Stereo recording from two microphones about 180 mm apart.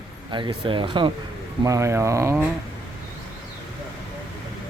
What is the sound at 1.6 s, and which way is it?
Speech, 15° right (ahead or behind).